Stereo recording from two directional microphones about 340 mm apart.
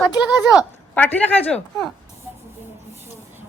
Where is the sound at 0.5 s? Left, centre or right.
Centre.